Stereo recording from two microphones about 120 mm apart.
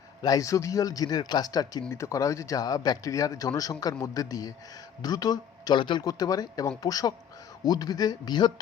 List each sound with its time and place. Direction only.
0.2 s speech: 30° left (ahead or behind)